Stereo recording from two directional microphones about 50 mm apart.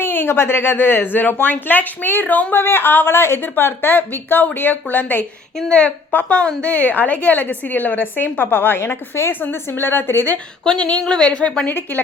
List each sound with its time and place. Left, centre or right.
0.0 s speech: left
2.6 s a woman's voice: left
8.8 s a woman's voice: left
9.4 s speech: left
10.8 s a woman's voice: left